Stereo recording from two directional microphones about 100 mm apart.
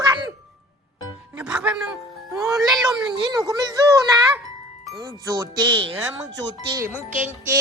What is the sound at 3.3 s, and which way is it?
Speech, 40° right (ahead or behind).